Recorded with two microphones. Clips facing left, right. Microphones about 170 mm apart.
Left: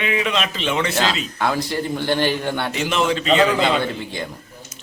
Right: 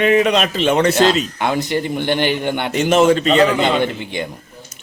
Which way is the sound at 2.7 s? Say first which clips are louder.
Right 10 dB; 45° right (ahead or behind).